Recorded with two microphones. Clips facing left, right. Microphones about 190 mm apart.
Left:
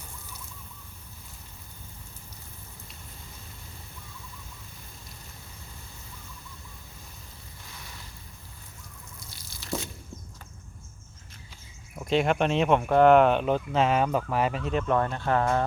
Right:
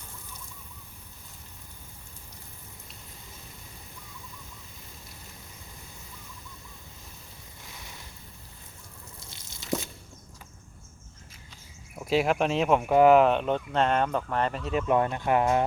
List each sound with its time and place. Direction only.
9.2 s drip: 25° right (ahead or behind)
11.9 s speech: 5° right (ahead or behind)